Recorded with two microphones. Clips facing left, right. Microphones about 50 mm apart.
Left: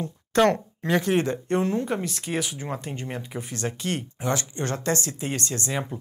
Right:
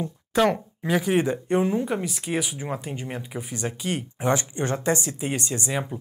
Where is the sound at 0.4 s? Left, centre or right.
Centre.